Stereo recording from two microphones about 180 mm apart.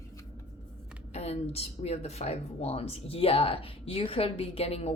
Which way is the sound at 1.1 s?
35° left (ahead or behind).